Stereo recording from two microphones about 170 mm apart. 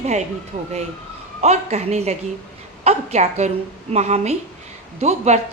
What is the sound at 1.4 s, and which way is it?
A woman's voice, 40° right (ahead or behind).